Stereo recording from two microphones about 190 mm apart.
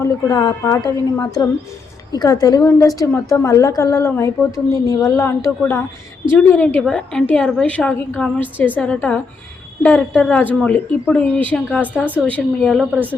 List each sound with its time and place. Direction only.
0.0 s a woman's voice: 20° left (ahead or behind)
12.8 s speech: 5° right (ahead or behind)